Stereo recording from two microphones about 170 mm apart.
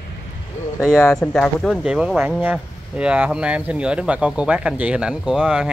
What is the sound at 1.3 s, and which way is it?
Speech, centre (ahead or behind).